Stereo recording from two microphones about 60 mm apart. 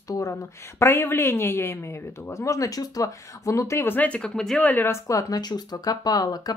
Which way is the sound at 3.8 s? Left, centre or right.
Left.